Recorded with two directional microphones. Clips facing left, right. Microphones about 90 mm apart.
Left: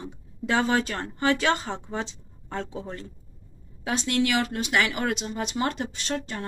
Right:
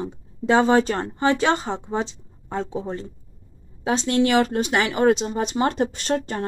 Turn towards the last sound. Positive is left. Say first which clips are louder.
# right 7 dB
turn(degrees=-40)  # may be behind; listen again after turning